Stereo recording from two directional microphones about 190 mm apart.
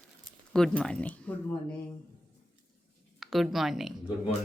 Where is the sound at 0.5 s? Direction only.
5° left (ahead or behind).